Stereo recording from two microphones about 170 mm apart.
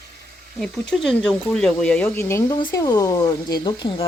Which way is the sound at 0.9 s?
Centre (ahead or behind).